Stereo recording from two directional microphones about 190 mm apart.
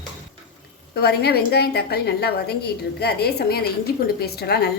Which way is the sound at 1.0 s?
60° left (ahead or behind).